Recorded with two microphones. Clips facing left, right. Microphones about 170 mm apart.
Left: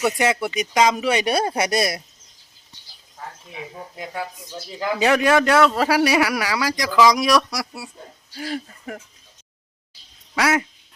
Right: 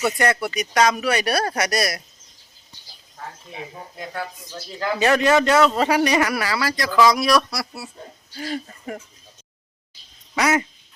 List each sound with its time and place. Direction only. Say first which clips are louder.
0.0 s a man's voice: left 1 dB; 10° left (ahead or behind)
3.9 s a man's voice: left 1 dB; 10° left (ahead or behind)
10.3 s speech: even; centre (ahead or behind)